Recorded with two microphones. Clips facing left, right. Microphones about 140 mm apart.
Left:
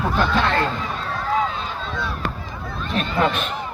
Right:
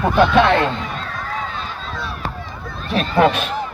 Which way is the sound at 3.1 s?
75° right (ahead or behind).